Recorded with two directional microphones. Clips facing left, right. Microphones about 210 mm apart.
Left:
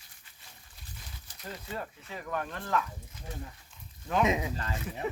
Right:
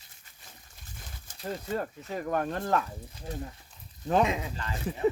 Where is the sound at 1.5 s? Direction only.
45° right (ahead or behind).